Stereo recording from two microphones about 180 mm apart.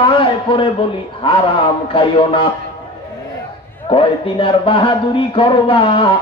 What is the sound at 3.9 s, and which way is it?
Speech, 30° left (ahead or behind).